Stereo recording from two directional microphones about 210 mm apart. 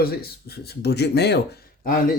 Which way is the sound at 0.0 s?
45° left (ahead or behind).